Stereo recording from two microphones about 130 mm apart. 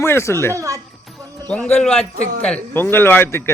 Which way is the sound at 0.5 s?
25° right (ahead or behind).